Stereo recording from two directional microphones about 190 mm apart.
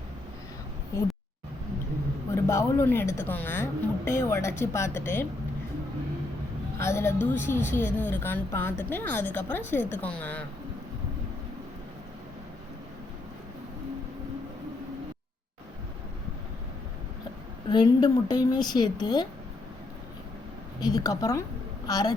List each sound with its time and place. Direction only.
2.3 s speech: 15° left (ahead or behind)
6.7 s speech: 15° left (ahead or behind)
17.7 s speech: 25° left (ahead or behind)
20.8 s speech: 20° left (ahead or behind)